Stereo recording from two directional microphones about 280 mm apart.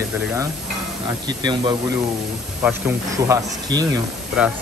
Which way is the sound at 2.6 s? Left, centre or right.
Centre.